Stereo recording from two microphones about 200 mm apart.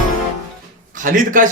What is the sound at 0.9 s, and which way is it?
Speech, 40° right (ahead or behind).